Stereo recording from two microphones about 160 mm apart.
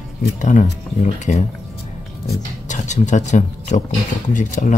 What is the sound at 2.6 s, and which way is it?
Speech, 50° left (ahead or behind).